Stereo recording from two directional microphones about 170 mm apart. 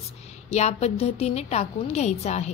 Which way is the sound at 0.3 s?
40° left (ahead or behind).